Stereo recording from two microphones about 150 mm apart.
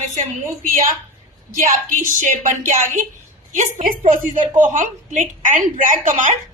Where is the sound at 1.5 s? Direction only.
60° right (ahead or behind).